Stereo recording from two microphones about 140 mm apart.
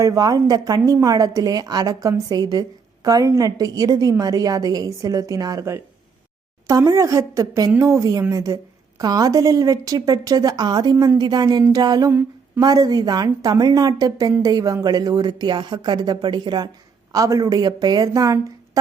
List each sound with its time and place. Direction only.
0.0 s a woman's voice: 25° right (ahead or behind)